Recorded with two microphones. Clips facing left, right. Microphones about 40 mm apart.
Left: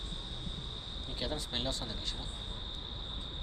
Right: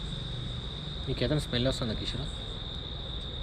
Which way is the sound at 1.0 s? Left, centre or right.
Right.